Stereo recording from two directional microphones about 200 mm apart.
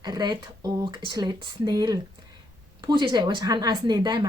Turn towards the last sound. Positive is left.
turn(degrees=-20)  # may be behind; listen again after turning